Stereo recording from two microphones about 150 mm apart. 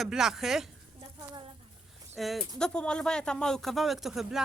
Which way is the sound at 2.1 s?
Centre (ahead or behind).